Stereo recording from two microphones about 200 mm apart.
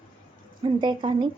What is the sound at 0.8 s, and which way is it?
Speech, 25° right (ahead or behind).